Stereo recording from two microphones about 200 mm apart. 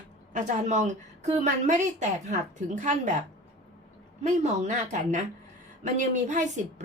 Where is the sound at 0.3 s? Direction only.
40° right (ahead or behind).